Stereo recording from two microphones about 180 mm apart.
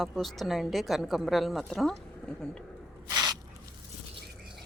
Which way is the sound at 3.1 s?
20° right (ahead or behind).